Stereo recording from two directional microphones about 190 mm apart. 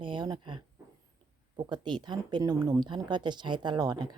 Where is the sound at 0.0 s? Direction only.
25° right (ahead or behind).